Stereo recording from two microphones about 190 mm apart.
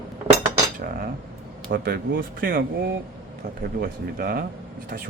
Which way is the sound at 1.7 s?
55° right (ahead or behind).